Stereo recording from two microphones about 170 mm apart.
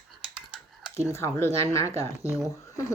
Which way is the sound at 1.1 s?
15° left (ahead or behind).